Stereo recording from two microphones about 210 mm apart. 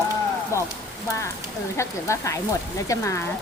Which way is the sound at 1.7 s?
15° left (ahead or behind).